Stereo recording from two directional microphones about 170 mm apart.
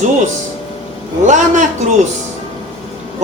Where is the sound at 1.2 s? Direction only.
45° right (ahead or behind).